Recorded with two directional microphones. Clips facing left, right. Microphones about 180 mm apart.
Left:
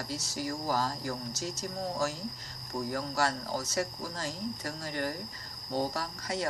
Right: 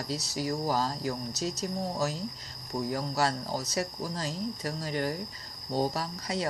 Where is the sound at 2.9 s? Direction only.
25° right (ahead or behind).